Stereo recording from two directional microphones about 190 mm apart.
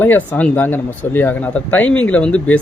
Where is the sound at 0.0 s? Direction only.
10° left (ahead or behind).